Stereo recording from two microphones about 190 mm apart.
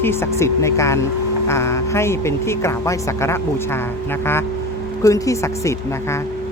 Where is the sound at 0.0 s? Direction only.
15° left (ahead or behind).